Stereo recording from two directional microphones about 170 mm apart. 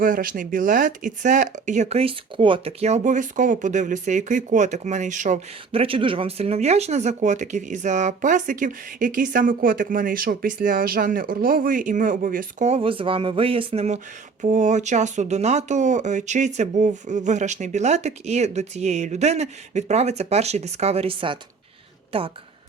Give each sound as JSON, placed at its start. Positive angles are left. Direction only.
{"t": 0.0, "sound": "speech", "side_deg": -55}
{"t": 5.7, "sound": "a woman's voice", "side_deg": -35}